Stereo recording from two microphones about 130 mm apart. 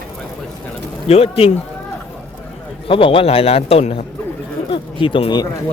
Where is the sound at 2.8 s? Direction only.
45° left (ahead or behind).